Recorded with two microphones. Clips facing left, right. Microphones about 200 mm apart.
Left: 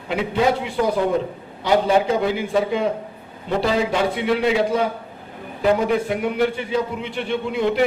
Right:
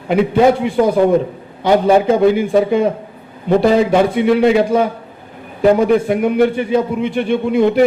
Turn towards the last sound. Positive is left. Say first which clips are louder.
# right 7 dB
turn(degrees=-50)  # may be behind; listen again after turning